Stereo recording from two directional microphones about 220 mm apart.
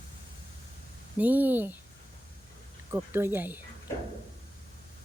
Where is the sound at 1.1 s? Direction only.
5° right (ahead or behind).